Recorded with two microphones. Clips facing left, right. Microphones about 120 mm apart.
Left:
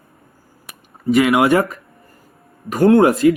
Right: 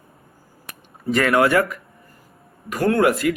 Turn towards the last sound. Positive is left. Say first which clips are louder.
# left 6 dB
turn(degrees=25)  # may be behind; listen again after turning